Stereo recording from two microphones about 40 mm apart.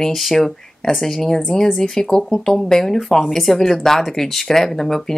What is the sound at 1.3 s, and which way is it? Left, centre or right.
Speech, left.